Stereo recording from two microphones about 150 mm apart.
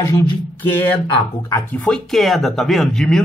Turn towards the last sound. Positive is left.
turn(degrees=5)  # may be behind; listen again after turning